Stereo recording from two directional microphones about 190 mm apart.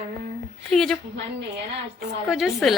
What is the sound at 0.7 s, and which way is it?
Speech, centre (ahead or behind).